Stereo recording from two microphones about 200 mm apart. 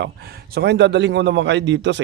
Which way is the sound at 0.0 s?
50° right (ahead or behind).